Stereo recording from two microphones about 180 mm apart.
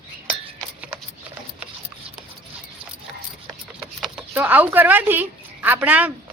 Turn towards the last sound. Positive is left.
turn(degrees=-10)  # may be behind; listen again after turning